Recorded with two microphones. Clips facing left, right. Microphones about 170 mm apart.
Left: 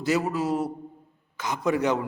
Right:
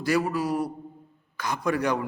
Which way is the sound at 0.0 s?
20° left (ahead or behind).